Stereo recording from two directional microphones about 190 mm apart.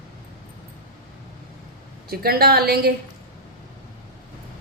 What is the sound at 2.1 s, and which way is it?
Speech, 55° right (ahead or behind).